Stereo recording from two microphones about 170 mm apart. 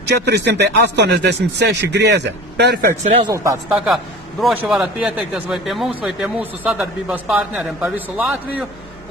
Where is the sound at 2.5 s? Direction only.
75° right (ahead or behind).